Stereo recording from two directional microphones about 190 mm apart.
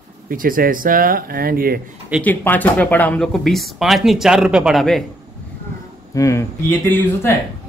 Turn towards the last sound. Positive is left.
turn(degrees=10)  # may be behind; listen again after turning